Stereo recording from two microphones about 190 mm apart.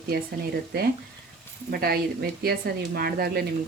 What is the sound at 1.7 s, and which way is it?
Speech, 55° right (ahead or behind).